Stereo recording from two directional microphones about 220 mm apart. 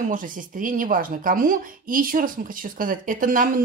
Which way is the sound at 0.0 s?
40° right (ahead or behind).